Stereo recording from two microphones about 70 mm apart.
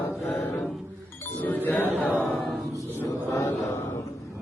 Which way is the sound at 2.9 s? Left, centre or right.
Left.